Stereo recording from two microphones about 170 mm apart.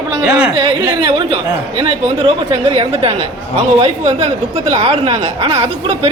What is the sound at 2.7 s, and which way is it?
A woman's voice, 35° right (ahead or behind).